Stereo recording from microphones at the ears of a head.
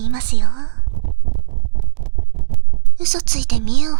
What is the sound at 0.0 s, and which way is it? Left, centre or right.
Stomach rumble, right.